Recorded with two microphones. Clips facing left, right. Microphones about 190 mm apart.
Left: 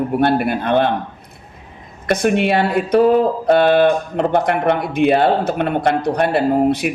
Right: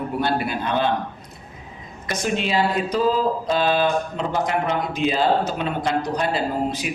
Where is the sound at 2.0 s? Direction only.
60° left (ahead or behind).